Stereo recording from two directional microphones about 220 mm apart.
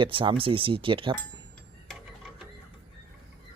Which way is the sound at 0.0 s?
20° right (ahead or behind).